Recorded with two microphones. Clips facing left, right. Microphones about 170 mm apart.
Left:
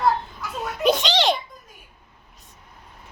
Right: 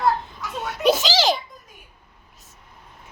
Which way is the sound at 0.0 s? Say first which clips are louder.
Even; centre (ahead or behind).